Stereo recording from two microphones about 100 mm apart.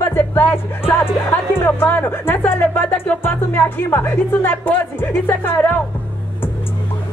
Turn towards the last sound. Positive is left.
turn(degrees=20)  # may be behind; listen again after turning